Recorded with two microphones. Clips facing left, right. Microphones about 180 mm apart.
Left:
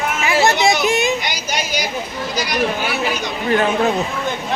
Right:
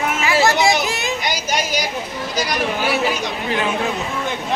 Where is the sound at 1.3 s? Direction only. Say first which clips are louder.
Right 2 dB; 45° right (ahead or behind).